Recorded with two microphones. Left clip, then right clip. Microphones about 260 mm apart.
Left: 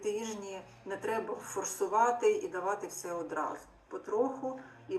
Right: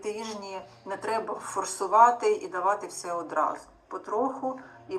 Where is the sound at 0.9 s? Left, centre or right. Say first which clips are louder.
Right 5 dB; centre.